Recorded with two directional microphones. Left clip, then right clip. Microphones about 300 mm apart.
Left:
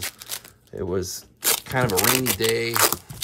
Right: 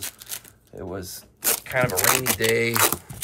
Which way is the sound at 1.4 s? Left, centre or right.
Centre.